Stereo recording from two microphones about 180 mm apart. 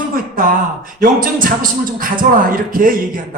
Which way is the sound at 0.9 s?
50° right (ahead or behind).